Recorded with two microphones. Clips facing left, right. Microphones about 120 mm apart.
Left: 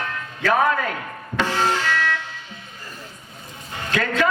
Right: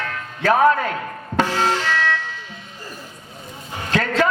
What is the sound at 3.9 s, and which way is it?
Speech, 30° right (ahead or behind).